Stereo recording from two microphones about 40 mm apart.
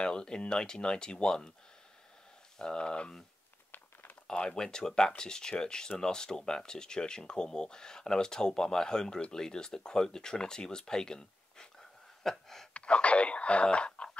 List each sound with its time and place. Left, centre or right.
0.0 s speech: left
2.6 s speech: left
3.7 s a sound: left
4.3 s speech: left
4.6 s speech: centre
12.2 s a sound: centre
12.7 s speech: left